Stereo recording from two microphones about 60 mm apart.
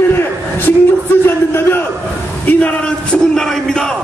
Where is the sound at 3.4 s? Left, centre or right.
Centre.